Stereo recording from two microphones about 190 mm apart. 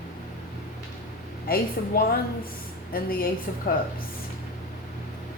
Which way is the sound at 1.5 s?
50° left (ahead or behind).